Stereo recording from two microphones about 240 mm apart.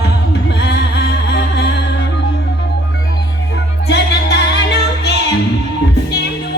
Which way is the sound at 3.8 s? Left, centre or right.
Left.